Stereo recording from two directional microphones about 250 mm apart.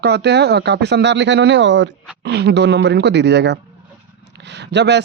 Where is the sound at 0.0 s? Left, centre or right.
Right.